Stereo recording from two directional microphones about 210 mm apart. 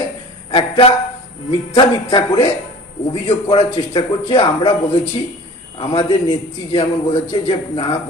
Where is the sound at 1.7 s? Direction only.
20° left (ahead or behind).